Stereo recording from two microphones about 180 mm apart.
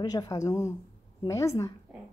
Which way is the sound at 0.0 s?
20° left (ahead or behind).